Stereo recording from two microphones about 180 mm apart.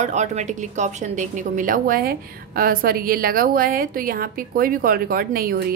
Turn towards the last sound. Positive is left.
turn(degrees=-55)  # may be behind; listen again after turning